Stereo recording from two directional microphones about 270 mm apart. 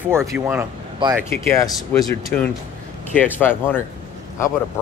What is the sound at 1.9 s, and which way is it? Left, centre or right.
Speech, centre.